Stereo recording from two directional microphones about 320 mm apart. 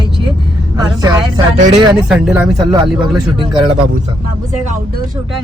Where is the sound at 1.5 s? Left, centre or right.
Right.